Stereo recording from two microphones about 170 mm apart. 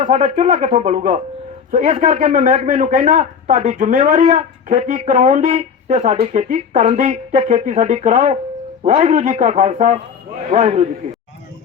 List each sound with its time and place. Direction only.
0.0 s a man's voice: 45° right (ahead or behind)